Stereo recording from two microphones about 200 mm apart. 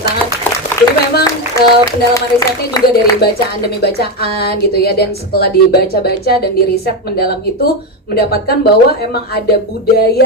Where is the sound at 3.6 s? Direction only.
55° left (ahead or behind).